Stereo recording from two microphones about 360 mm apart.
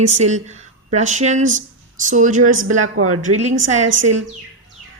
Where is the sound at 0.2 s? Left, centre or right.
Centre.